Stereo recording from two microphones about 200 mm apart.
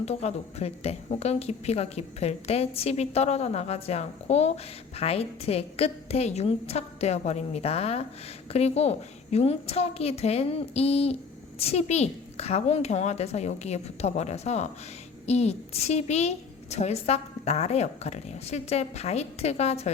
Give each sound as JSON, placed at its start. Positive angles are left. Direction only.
{"t": 0.0, "sound": "speech", "side_deg": 30}